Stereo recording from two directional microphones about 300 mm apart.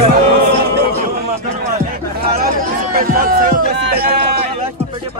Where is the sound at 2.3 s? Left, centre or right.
Right.